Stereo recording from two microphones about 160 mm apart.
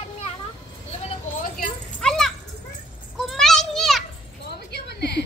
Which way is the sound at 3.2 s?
Centre (ahead or behind).